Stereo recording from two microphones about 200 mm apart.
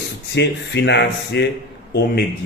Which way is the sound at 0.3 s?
60° left (ahead or behind).